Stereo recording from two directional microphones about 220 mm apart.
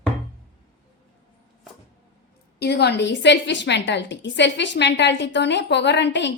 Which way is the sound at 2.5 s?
50° left (ahead or behind).